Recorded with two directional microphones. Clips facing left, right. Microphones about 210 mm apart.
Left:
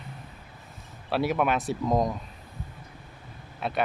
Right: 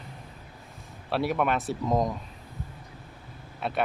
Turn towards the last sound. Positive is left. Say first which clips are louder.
# even
turn(degrees=0)  # may be behind; listen again after turning